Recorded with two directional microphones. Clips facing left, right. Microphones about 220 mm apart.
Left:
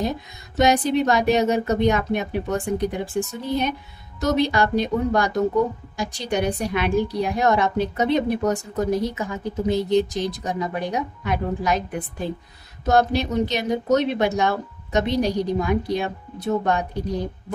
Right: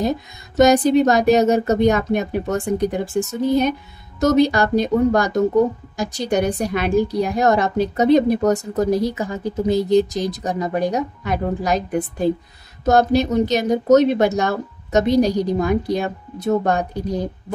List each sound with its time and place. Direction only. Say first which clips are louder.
0.6 s a woman's voice: right 6 dB; 45° right (ahead or behind)